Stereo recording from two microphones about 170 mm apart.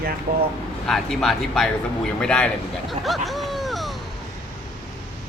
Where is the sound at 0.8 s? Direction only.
Centre (ahead or behind).